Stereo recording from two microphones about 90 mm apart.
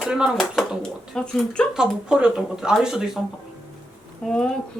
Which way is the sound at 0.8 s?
5° left (ahead or behind).